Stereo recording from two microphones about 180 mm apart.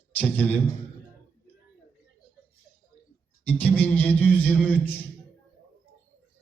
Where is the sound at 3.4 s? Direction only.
10° left (ahead or behind).